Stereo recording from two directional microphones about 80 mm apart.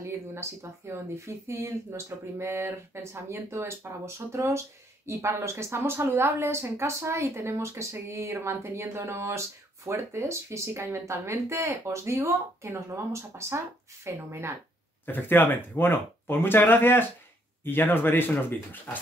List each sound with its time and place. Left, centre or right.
0.3 s speech: right
15.0 s speech: left